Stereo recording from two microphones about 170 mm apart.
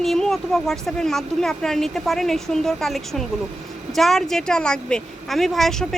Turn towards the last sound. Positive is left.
turn(degrees=0)  # may be behind; listen again after turning